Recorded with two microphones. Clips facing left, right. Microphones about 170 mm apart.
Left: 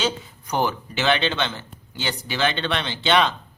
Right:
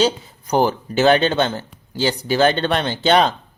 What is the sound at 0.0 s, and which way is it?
Speech, 35° right (ahead or behind).